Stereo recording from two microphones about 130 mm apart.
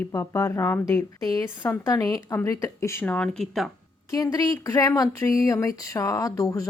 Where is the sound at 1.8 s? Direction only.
25° left (ahead or behind); by 3.7 s 5° left (ahead or behind).